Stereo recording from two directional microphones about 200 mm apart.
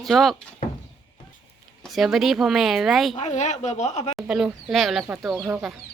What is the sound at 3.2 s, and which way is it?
A woman's voice, 35° left (ahead or behind).